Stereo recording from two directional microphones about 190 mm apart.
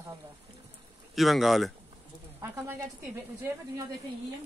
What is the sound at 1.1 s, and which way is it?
Speech, centre (ahead or behind).